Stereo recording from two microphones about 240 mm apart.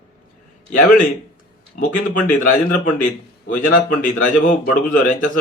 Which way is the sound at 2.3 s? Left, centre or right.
Left.